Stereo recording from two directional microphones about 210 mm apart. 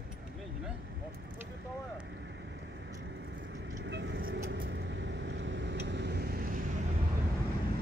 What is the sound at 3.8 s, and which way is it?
Vehicle, 55° right (ahead or behind).